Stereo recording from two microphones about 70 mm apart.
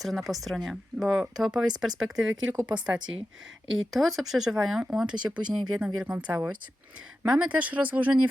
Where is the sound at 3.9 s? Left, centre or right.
Centre.